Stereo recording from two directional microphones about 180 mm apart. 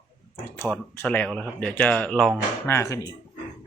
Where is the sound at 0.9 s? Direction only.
10° left (ahead or behind).